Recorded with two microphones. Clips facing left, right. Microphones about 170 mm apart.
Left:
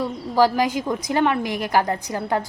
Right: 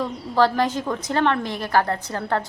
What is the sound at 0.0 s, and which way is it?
A woman's voice, 10° left (ahead or behind).